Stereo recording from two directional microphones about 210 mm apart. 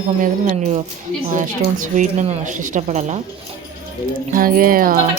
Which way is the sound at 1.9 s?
35° right (ahead or behind).